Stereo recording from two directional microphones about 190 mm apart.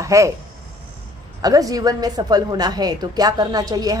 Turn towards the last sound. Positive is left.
turn(degrees=-20)  # may be behind; listen again after turning